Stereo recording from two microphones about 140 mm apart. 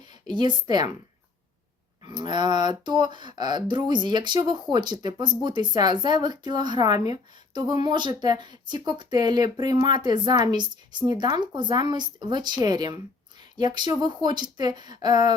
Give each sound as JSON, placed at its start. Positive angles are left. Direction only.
{"t": 0.0, "sound": "a woman's voice", "side_deg": -30}
{"t": 2.0, "sound": "speech", "side_deg": -30}